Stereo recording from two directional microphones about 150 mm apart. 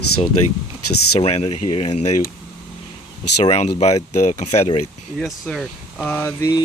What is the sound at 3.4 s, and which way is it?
Speech, 45° left (ahead or behind).